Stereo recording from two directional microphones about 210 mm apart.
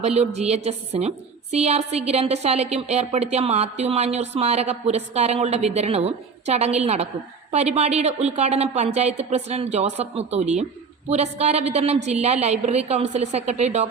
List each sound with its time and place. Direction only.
0.0 s speech: 30° right (ahead or behind)